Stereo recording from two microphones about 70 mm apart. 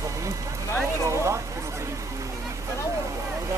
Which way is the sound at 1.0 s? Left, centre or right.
Right.